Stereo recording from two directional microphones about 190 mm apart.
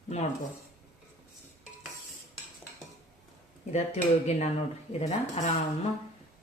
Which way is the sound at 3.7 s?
35° left (ahead or behind).